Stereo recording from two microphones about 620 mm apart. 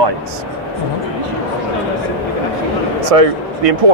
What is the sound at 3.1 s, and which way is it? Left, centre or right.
Speech, right.